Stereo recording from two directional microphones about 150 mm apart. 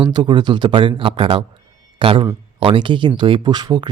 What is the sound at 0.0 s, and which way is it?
A man's voice, 30° right (ahead or behind).